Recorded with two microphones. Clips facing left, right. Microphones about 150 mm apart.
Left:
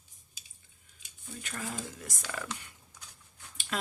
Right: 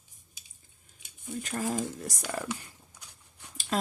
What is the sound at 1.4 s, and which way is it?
Speech, 40° right (ahead or behind).